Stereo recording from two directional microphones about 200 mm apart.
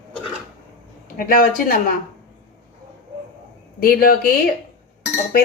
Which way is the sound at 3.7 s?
50° left (ahead or behind).